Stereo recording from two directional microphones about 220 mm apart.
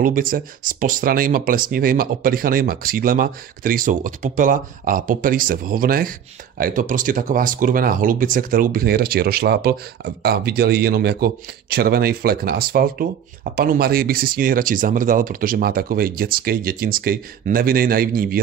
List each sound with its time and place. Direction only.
0.0 s speech: 40° right (ahead or behind)